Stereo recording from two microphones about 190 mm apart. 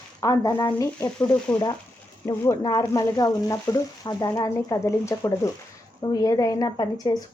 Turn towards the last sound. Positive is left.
turn(degrees=20)  # may be behind; listen again after turning